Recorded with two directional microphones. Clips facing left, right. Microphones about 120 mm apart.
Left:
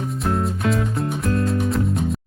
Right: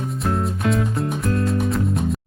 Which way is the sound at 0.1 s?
Centre (ahead or behind).